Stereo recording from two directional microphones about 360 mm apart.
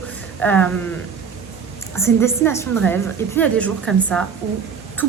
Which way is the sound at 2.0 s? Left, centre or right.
Centre.